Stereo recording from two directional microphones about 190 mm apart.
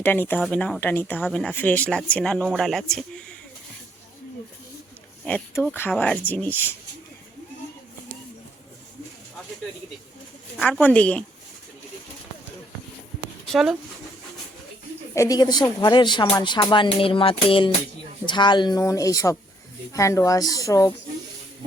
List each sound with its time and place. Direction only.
0.0 s speech: 10° left (ahead or behind)
5.2 s speech: 5° left (ahead or behind)
10.6 s speech: 5° left (ahead or behind)
13.5 s speech: centre (ahead or behind)
15.1 s music: 15° left (ahead or behind)
18.3 s speech: 25° left (ahead or behind)